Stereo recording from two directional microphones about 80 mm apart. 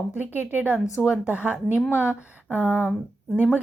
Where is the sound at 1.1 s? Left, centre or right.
Centre.